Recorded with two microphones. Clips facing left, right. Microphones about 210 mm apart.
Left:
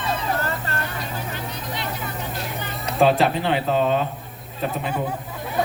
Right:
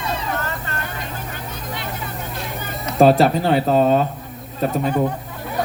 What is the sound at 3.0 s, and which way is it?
Speech, 40° right (ahead or behind).